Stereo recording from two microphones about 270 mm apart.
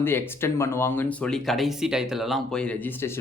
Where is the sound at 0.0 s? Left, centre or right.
Centre.